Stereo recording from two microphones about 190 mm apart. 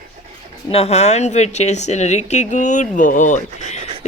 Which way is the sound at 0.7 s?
30° left (ahead or behind).